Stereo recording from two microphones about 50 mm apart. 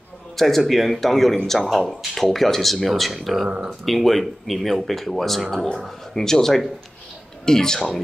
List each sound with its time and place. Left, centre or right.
0.4 s speech: centre
3.4 s speech: right
3.8 s speech: centre